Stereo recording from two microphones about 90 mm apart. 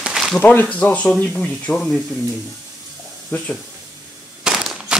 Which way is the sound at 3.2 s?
10° left (ahead or behind).